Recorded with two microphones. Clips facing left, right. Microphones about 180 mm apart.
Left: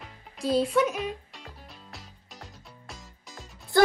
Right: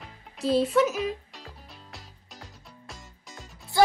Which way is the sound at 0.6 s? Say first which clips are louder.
Right 2 dB; centre (ahead or behind).